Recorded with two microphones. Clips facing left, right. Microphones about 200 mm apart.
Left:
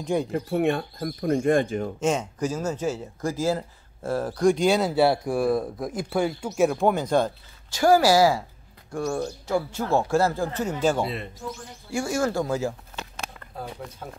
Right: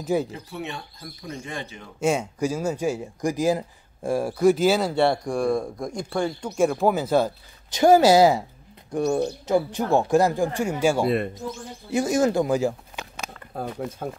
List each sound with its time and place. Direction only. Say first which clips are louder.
0.0 s speech: right 1 dB; 5° right (ahead or behind)
0.3 s speech: left 11 dB; 55° left (ahead or behind)
2.0 s speech: right 4 dB; 10° right (ahead or behind)
7.7 s speech: right 3 dB; 20° right (ahead or behind)